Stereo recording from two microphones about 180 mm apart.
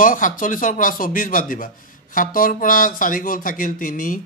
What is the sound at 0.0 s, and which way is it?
Speech, 50° left (ahead or behind).